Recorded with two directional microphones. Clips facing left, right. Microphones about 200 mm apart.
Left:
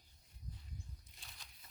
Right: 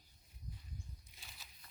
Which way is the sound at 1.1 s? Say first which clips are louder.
Even; 5° right (ahead or behind).